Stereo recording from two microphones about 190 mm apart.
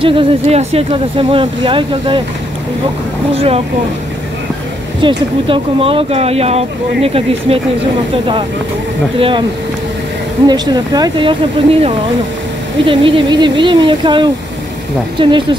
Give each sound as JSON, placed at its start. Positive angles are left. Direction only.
{"t": 0.0, "sound": "speech", "side_deg": -30}
{"t": 3.3, "sound": "speech", "side_deg": -30}
{"t": 5.0, "sound": "speech", "side_deg": -30}
{"t": 10.4, "sound": "speech", "side_deg": -20}